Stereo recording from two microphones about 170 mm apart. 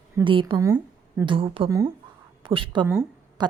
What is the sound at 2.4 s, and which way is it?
A woman's voice, 30° right (ahead or behind).